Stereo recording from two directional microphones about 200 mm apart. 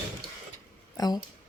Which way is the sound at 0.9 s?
20° left (ahead or behind).